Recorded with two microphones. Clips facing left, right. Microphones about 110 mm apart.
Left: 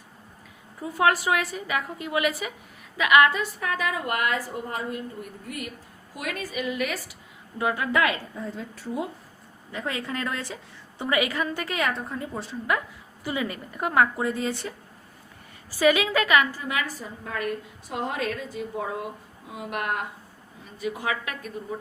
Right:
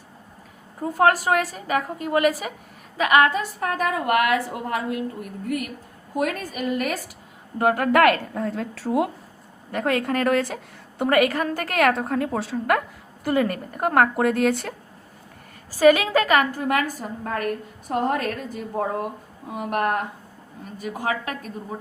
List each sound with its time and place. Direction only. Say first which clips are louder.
0.8 s a woman's voice: right 4 dB; 45° right (ahead or behind)
7.6 s a woman's voice: right 7 dB; 55° right (ahead or behind); by 9.0 s 85° right
9.7 s a woman's voice: right 8 dB; 60° right (ahead or behind)
13.2 s a woman's voice: right 8 dB; 50° right (ahead or behind)
15.8 s a woman's voice: right 5 dB; 45° right (ahead or behind)
16.5 s a woman's voice: right 7 dB; 50° right (ahead or behind)